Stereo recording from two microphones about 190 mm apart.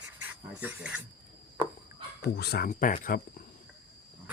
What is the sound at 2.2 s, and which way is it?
Speech, 55° left (ahead or behind).